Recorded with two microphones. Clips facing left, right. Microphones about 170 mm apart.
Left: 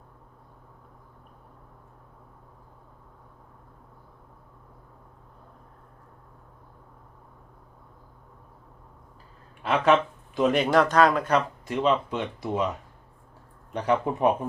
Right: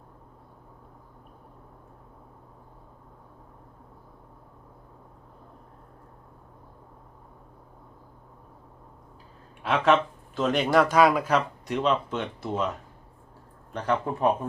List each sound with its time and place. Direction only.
9.6 s speech: centre (ahead or behind)
13.7 s speech: 15° left (ahead or behind)